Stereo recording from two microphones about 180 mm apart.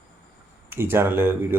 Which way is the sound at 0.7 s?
10° right (ahead or behind).